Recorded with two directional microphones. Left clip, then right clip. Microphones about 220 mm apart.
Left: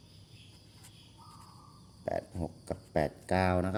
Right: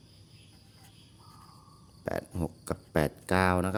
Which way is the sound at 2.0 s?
30° right (ahead or behind).